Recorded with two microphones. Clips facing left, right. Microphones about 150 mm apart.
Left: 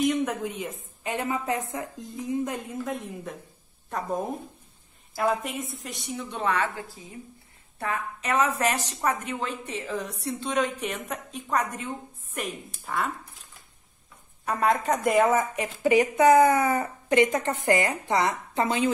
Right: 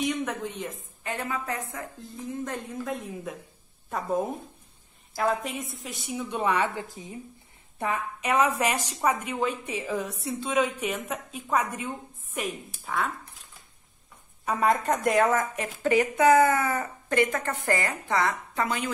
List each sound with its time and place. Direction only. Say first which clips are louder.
0.0 s a woman's voice: left 4 dB; 5° left (ahead or behind)
5.1 s a woman's voice: left 1 dB; centre (ahead or behind); by 18.9 s 25° left (ahead or behind)